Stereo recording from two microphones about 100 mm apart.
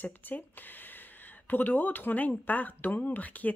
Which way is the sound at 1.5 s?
20° left (ahead or behind).